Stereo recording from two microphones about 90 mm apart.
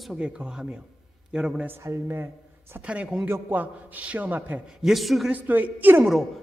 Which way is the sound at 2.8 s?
15° right (ahead or behind).